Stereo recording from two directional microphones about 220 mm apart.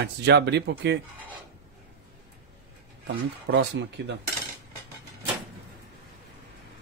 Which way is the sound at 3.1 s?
45° right (ahead or behind).